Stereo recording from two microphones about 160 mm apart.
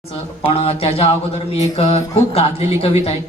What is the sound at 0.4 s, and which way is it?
Speech, 40° left (ahead or behind).